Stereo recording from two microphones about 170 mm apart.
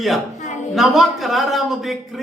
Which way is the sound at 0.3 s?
45° left (ahead or behind).